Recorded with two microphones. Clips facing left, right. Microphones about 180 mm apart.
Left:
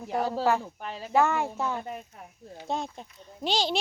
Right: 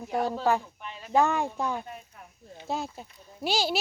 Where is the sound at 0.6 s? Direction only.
40° left (ahead or behind).